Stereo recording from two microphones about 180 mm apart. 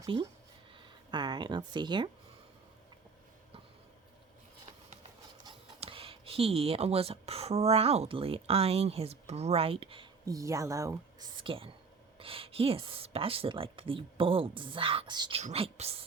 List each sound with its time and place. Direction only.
1.1 s speech: 25° right (ahead or behind)
5.5 s a woman's voice: 30° right (ahead or behind)